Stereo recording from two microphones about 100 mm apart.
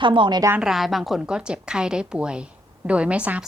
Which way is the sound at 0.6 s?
5° right (ahead or behind).